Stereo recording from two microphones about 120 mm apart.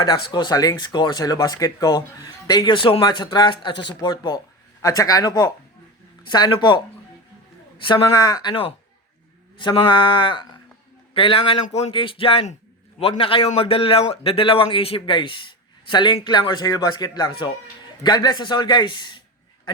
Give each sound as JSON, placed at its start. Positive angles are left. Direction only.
{"t": 0.0, "sound": "a man's voice", "side_deg": 40}
{"t": 11.6, "sound": "speech", "side_deg": 60}
{"t": 11.9, "sound": "a man's voice", "side_deg": 45}